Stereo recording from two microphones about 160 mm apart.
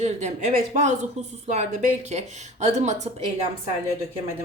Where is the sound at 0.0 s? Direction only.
45° right (ahead or behind).